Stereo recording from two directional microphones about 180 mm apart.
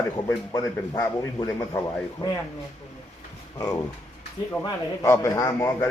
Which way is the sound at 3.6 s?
15° left (ahead or behind).